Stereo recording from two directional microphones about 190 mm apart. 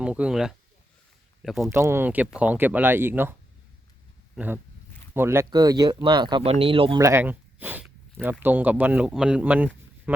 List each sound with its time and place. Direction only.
0.0 s speech: 5° right (ahead or behind)
1.7 s speech: 10° right (ahead or behind)
4.4 s speech: 10° right (ahead or behind); by 7.0 s 30° right (ahead or behind)
7.0 s speech: 15° right (ahead or behind)